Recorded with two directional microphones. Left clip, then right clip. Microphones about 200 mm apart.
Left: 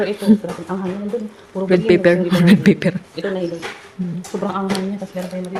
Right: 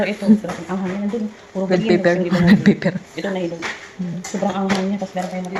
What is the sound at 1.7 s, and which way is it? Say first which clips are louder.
Speech: left 3 dB; 35° left (ahead or behind).